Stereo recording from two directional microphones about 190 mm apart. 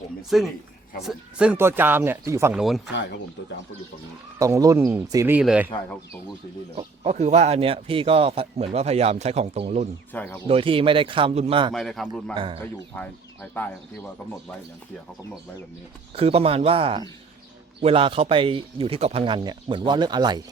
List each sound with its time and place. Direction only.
1.0 s speech: 5° right (ahead or behind)
2.6 s speech: centre (ahead or behind)
2.9 s speech: 65° left (ahead or behind)
4.4 s speech: 15° right (ahead or behind)
6.7 s a man's voice: 35° right (ahead or behind)
10.1 s speech: 10° left (ahead or behind)
10.4 s speech: 30° right (ahead or behind)
11.7 s speech: centre (ahead or behind)
12.0 s speech: 25° right (ahead or behind)
12.9 s speech: 10° left (ahead or behind)
16.1 s a man's voice: 30° right (ahead or behind)